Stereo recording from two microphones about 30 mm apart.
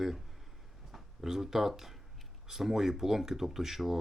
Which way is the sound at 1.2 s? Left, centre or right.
Centre.